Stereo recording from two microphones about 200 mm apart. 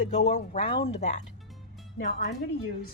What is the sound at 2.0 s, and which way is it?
Speech, 55° left (ahead or behind).